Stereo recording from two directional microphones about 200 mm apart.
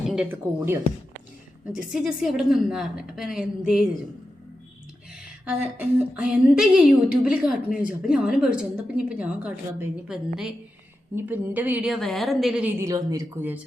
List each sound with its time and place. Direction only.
0.1 s a woman's voice: 5° right (ahead or behind)
5.1 s a woman's voice: 5° right (ahead or behind)
12.8 s speech: 15° right (ahead or behind)